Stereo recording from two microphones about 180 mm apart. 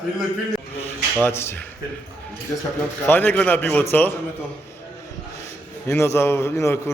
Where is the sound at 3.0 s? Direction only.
10° left (ahead or behind).